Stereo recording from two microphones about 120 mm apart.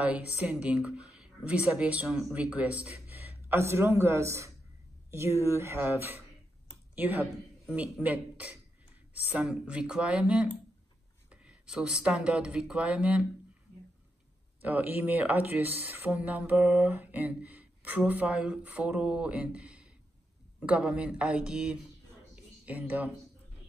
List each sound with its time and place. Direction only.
0.0 s speech: 10° right (ahead or behind)
3.4 s speech: 20° right (ahead or behind)
7.7 s speech: 15° right (ahead or behind)
14.6 s speech: 15° right (ahead or behind)
22.3 s a sound: 15° right (ahead or behind)